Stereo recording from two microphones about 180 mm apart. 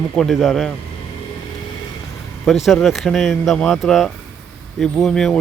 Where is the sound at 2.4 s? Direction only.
Centre (ahead or behind).